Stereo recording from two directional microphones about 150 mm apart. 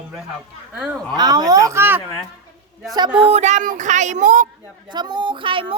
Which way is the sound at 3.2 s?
50° right (ahead or behind).